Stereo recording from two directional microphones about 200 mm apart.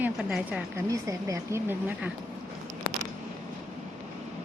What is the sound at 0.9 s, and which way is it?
Speech, 15° right (ahead or behind).